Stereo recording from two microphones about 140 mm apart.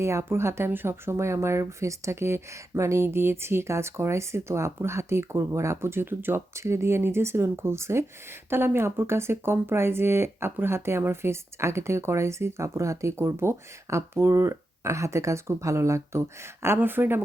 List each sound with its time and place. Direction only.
0.0 s speech: 20° right (ahead or behind)